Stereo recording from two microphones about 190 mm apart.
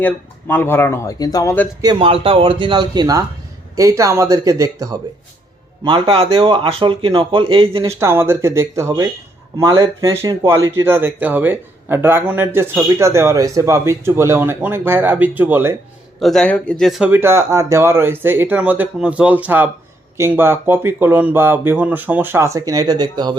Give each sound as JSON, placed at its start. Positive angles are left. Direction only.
{"t": 0.0, "sound": "speech", "side_deg": 10}
{"t": 1.8, "sound": "speech", "side_deg": -25}
{"t": 5.8, "sound": "speech", "side_deg": -25}
{"t": 7.9, "sound": "speech", "side_deg": -15}
{"t": 16.2, "sound": "speech", "side_deg": 5}